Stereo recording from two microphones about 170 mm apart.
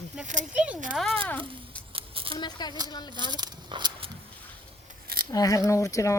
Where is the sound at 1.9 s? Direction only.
30° right (ahead or behind).